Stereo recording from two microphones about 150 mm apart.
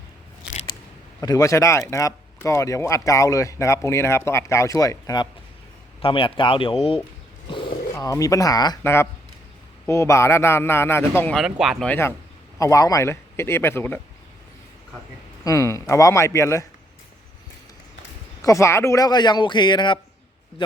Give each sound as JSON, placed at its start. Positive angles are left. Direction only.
{"t": 1.2, "sound": "speech", "side_deg": 25}
{"t": 6.0, "sound": "speech", "side_deg": 35}
{"t": 7.9, "sound": "speech", "side_deg": 20}
{"t": 8.8, "sound": "a man's voice", "side_deg": 15}
{"t": 11.3, "sound": "speech", "side_deg": -5}
{"t": 11.9, "sound": "a man's voice", "side_deg": 15}
{"t": 15.4, "sound": "speech", "side_deg": 20}
{"t": 18.4, "sound": "speech", "side_deg": 20}